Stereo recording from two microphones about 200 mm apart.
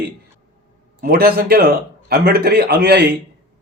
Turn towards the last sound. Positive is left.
turn(degrees=-55)  # may be behind; listen again after turning